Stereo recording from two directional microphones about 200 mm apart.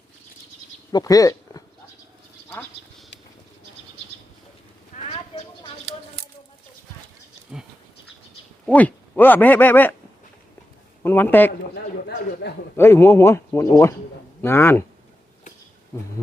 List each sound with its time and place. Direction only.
0.9 s speech: 20° left (ahead or behind)
4.9 s a sound: 35° left (ahead or behind)
7.5 s goat: 5° right (ahead or behind)
8.6 s speech: 5° left (ahead or behind)
11.0 s speech: 10° left (ahead or behind)
11.7 s speech: 55° left (ahead or behind)
12.7 s speech: 10° left (ahead or behind)